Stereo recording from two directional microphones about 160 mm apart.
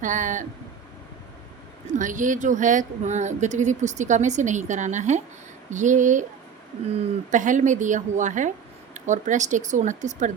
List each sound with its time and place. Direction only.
0.0 s speech: 50° right (ahead or behind)
1.9 s speech: 50° right (ahead or behind)
7.3 s speech: 50° right (ahead or behind)